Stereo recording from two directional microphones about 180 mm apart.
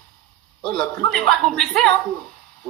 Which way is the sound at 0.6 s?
5° left (ahead or behind).